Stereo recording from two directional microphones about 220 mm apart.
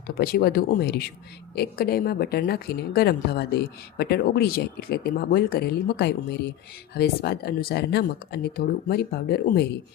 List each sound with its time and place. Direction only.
0.1 s speech: 45° left (ahead or behind)